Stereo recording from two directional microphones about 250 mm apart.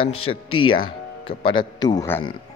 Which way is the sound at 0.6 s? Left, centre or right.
Centre.